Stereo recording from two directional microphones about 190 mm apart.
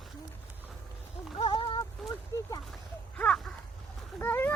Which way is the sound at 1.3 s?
25° left (ahead or behind).